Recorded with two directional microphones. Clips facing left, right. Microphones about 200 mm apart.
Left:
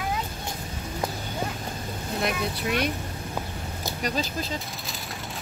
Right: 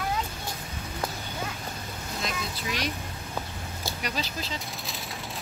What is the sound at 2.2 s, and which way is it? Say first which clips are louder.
Speech: left 6 dB; 60° left (ahead or behind).